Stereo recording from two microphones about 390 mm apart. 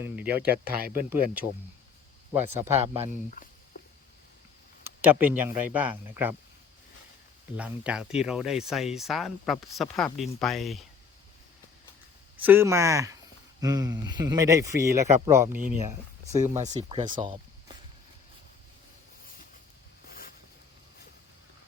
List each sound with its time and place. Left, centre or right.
0.0 s speech: centre
2.3 s speech: centre
4.9 s speech: centre
7.5 s speech: centre
12.4 s speech: centre
20.1 s a sound: left